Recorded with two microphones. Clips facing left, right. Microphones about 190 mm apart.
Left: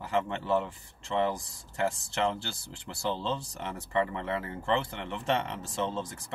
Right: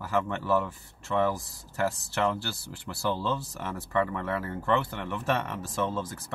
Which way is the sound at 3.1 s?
20° left (ahead or behind).